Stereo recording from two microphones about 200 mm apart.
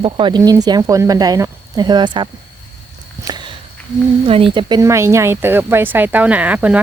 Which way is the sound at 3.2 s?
20° right (ahead or behind).